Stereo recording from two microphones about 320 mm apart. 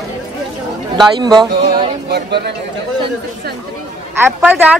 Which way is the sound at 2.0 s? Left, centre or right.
Right.